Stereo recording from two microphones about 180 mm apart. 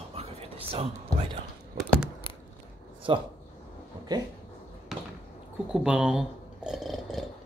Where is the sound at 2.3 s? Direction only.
30° left (ahead or behind).